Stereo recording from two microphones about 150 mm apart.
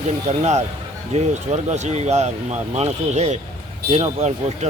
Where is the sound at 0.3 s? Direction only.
50° right (ahead or behind).